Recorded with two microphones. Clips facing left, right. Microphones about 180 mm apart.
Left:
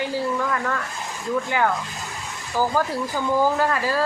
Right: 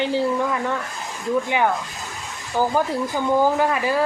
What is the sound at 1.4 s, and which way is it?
A woman's voice, 20° right (ahead or behind).